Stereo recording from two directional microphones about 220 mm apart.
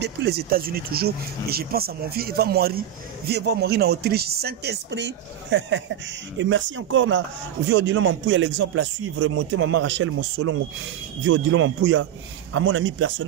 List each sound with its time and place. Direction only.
0.0 s speech: 50° right (ahead or behind)